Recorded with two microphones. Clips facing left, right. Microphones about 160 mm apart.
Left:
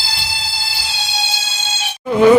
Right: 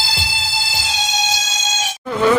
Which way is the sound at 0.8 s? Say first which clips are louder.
Right 3 dB; 90° right.